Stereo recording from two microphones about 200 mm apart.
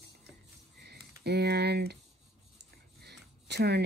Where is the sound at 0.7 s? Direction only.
55° right (ahead or behind).